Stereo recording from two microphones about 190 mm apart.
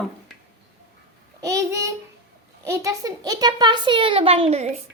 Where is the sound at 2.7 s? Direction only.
20° right (ahead or behind); by 4.8 s 35° right (ahead or behind).